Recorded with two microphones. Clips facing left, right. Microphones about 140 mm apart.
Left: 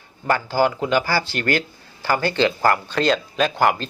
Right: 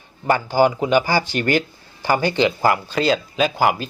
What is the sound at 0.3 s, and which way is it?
Speech, 15° right (ahead or behind).